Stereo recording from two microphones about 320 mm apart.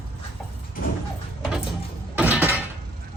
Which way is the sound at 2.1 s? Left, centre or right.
Centre.